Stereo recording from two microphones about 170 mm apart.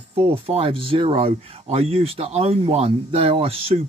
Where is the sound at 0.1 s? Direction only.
35° right (ahead or behind).